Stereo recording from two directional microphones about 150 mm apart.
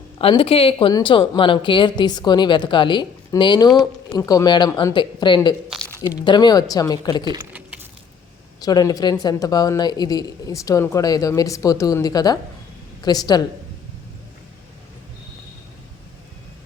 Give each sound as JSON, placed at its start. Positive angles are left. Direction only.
{"t": 0.2, "sound": "a woman's voice", "side_deg": 40}
{"t": 7.5, "sound": "keys jangling", "side_deg": -10}
{"t": 8.6, "sound": "a woman's voice", "side_deg": 25}